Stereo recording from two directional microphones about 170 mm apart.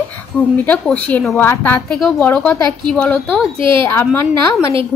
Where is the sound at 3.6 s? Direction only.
30° right (ahead or behind).